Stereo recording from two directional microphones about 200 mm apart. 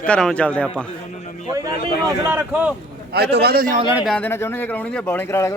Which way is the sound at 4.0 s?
5° left (ahead or behind).